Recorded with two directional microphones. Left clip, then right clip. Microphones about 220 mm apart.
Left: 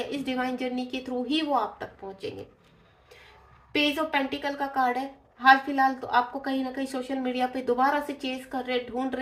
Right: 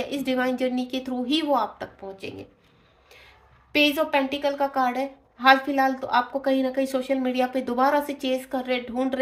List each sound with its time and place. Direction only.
0.0 s a woman's voice: 45° right (ahead or behind)
3.7 s a woman's voice: 45° right (ahead or behind)